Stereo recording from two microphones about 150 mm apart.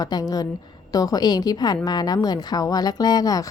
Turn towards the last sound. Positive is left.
turn(degrees=25)  # may be behind; listen again after turning